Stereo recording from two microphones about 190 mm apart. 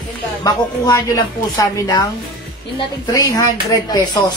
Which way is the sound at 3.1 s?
20° left (ahead or behind).